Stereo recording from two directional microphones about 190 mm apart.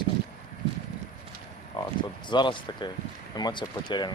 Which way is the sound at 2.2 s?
25° left (ahead or behind).